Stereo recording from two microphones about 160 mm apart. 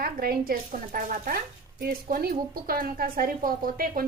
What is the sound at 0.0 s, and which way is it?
A woman's voice, 70° right (ahead or behind).